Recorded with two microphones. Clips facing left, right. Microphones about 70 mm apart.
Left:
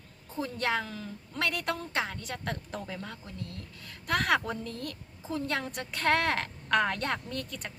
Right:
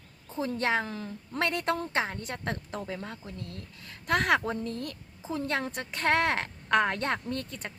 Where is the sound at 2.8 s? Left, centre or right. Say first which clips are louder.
Right 3 dB; centre.